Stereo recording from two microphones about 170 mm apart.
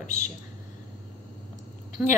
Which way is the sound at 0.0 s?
45° left (ahead or behind).